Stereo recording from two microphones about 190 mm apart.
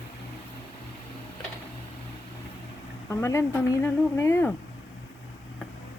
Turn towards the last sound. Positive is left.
turn(degrees=10)  # may be behind; listen again after turning